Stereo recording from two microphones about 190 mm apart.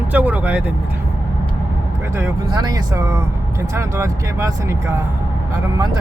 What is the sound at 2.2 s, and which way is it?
Speech, 15° right (ahead or behind).